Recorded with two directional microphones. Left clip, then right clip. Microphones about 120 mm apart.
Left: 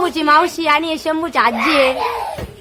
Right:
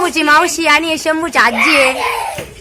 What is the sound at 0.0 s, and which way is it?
A woman's voice, centre (ahead or behind).